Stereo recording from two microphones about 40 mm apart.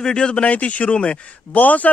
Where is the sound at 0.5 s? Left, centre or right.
Left.